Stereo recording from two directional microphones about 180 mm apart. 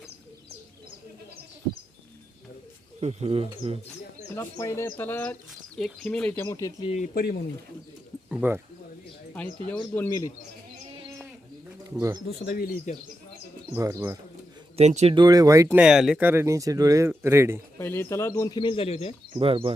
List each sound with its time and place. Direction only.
3.0 s speech: 35° right (ahead or behind)
4.4 s speech: 15° left (ahead or behind)
6.8 s a man's voice: 40° left (ahead or behind)
7.1 s speech: 60° left (ahead or behind)
8.3 s speech: 10° right (ahead or behind)
9.3 s speech: 10° left (ahead or behind)
11.9 s speech: 20° right (ahead or behind)
12.5 s speech: 45° left (ahead or behind)
13.7 s speech: 20° right (ahead or behind)
14.8 s speech: 35° right (ahead or behind)
15.1 s speech: 20° right (ahead or behind)
15.8 s speech: 5° right (ahead or behind)
17.7 s speech: 15° left (ahead or behind); by 19.1 s 35° left (ahead or behind)
19.3 s speech: 30° right (ahead or behind)